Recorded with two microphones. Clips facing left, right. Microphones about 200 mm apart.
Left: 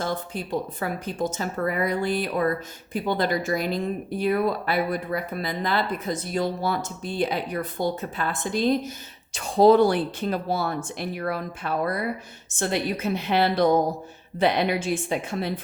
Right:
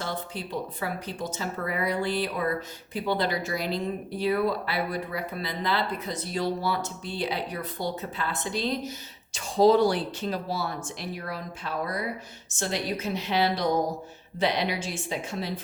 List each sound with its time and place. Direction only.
0.0 s a woman's voice: 50° left (ahead or behind)